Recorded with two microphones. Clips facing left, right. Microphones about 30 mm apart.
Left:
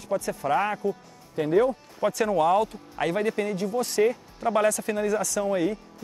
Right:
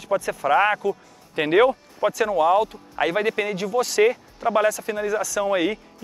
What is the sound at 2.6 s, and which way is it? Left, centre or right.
Speech, right.